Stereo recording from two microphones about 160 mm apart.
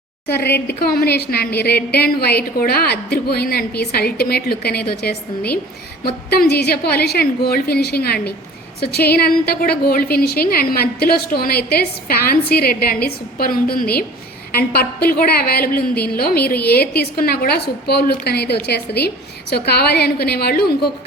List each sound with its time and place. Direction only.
0.7 s a woman's voice: 75° left (ahead or behind)